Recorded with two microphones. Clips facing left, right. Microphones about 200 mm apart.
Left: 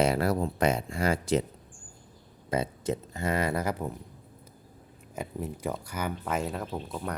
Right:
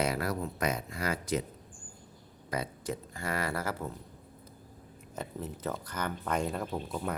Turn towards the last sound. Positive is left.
turn(degrees=0)  # may be behind; listen again after turning